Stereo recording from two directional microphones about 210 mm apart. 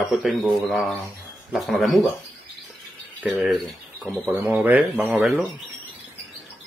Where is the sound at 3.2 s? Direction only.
5° right (ahead or behind).